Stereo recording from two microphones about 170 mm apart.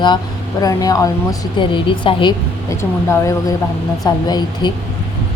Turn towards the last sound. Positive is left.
turn(degrees=25)  # may be behind; listen again after turning